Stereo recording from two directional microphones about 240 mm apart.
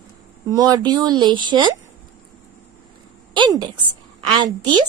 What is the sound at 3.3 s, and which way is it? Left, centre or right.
A woman's voice, centre.